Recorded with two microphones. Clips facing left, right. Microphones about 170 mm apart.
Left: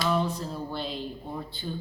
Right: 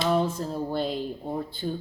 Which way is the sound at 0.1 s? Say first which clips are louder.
Right 3 dB; 45° right (ahead or behind).